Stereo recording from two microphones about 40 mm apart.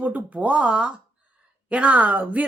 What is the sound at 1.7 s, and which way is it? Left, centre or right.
Speech, right.